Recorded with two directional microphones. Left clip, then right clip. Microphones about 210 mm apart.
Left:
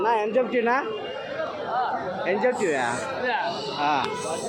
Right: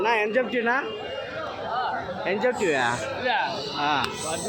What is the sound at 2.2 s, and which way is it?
Speech, 10° right (ahead or behind).